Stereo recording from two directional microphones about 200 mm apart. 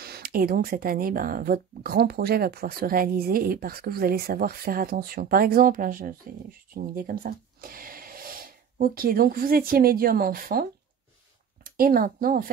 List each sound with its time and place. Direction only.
0.0 s speech: 50° right (ahead or behind)